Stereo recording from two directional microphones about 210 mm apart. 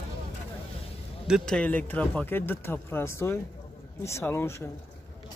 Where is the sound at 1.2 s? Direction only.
Centre (ahead or behind).